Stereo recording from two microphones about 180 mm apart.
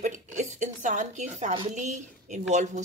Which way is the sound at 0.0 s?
45° right (ahead or behind).